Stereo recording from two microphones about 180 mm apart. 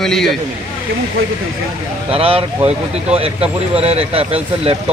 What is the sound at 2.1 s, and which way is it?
Speech, 30° right (ahead or behind).